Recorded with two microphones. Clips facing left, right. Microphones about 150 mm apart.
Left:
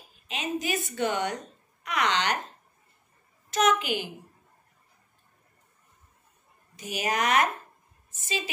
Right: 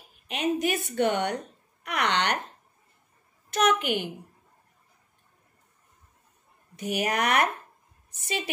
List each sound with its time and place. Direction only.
0.3 s a woman's voice: 55° right (ahead or behind)
3.4 s a woman's voice: 60° right (ahead or behind)
6.8 s a woman's voice: 65° right (ahead or behind)